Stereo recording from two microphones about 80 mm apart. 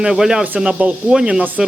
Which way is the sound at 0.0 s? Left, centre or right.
Centre.